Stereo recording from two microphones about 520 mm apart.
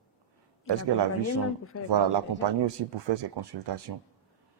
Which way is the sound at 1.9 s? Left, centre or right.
Right.